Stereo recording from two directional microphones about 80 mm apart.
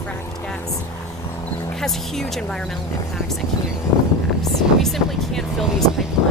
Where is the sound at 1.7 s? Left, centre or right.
Centre.